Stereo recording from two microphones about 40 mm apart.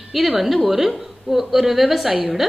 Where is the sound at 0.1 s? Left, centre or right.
Centre.